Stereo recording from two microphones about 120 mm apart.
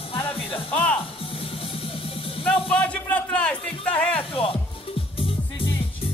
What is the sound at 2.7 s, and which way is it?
Music, 10° left (ahead or behind).